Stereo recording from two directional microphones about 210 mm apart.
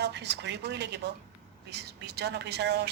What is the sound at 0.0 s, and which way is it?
A woman's voice, 55° right (ahead or behind).